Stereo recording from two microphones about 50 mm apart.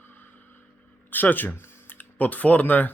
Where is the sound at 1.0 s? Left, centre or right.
Left.